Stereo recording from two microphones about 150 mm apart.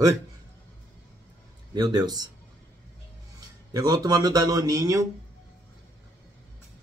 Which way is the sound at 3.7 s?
25° right (ahead or behind).